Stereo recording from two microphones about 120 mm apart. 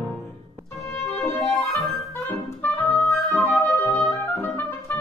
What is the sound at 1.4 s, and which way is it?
Music, centre (ahead or behind).